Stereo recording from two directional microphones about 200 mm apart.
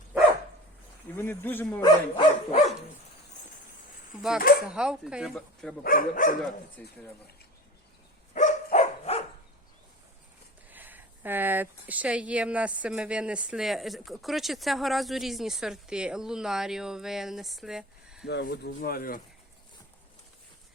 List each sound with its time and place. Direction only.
1.1 s a man's voice: 10° left (ahead or behind)
1.8 s a sound: 25° left (ahead or behind)
4.7 s speech: 5° right (ahead or behind)
5.8 s speech: 45° left (ahead or behind)
6.8 s speech: 5° left (ahead or behind)
8.3 s a sound: 35° left (ahead or behind)
10.7 s speech: 10° right (ahead or behind)
18.3 s speech: 55° left (ahead or behind)